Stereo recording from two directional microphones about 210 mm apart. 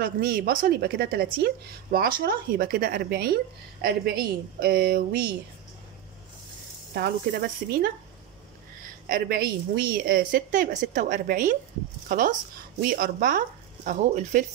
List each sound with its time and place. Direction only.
0.0 s a woman's voice: 45° right (ahead or behind)
7.0 s a woman's voice: 45° right (ahead or behind)
9.1 s a woman's voice: 45° right (ahead or behind)